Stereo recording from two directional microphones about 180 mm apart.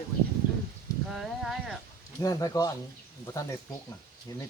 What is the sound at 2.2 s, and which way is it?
Speech, 20° left (ahead or behind).